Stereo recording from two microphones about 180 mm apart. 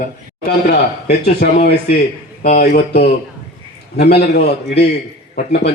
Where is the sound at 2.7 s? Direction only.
65° left (ahead or behind).